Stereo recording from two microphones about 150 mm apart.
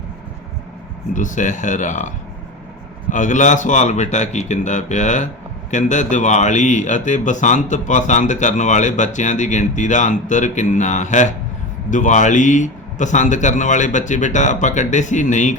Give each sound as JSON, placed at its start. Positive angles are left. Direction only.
{"t": 1.1, "sound": "a man's voice", "side_deg": 55}